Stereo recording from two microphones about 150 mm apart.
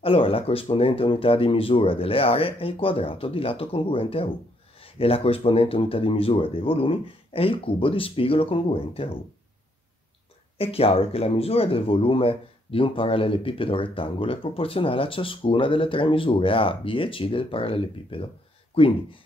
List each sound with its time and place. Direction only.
0.0 s speech: 40° left (ahead or behind)
10.6 s speech: 40° left (ahead or behind)